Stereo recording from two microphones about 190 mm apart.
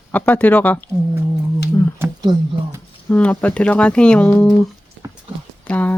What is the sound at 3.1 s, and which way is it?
Speech, 10° left (ahead or behind).